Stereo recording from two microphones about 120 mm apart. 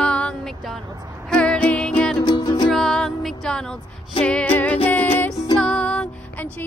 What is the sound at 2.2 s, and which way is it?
Music, 35° left (ahead or behind).